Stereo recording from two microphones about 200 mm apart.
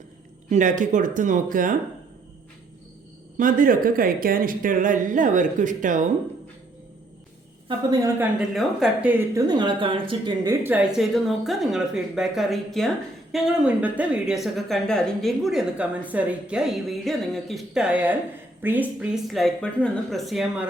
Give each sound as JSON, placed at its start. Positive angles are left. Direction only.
{"t": 0.5, "sound": "speech", "side_deg": -40}
{"t": 3.3, "sound": "speech", "side_deg": -40}
{"t": 7.9, "sound": "a woman's voice", "side_deg": -15}
{"t": 8.4, "sound": "a woman's voice", "side_deg": 0}